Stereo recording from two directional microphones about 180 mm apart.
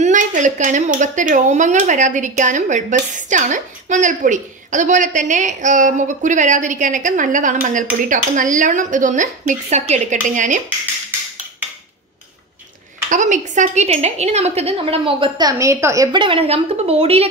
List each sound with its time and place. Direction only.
0.0 s speech: 45° right (ahead or behind)
13.1 s a woman's voice: 45° right (ahead or behind)